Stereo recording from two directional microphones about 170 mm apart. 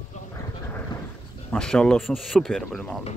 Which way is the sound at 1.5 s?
5° left (ahead or behind).